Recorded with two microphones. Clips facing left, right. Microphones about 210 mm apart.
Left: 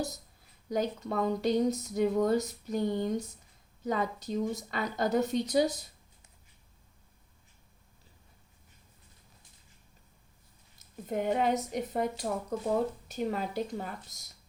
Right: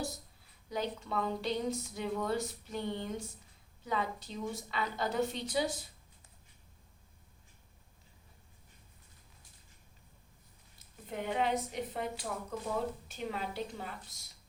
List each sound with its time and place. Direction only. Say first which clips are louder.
0.7 s a woman's voice: left 5 dB; 40° left (ahead or behind)
11.1 s a woman's voice: left 5 dB; 45° left (ahead or behind)